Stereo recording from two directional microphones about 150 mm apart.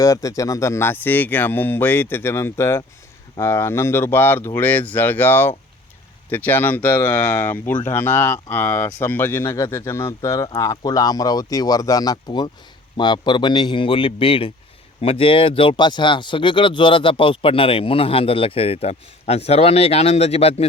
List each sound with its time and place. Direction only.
0.0 s speech: 20° left (ahead or behind); by 20.7 s 40° left (ahead or behind)